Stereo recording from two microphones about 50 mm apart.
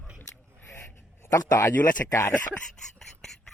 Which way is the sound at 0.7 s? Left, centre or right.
Left.